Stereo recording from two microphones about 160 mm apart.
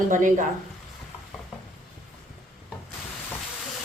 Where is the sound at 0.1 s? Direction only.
55° right (ahead or behind).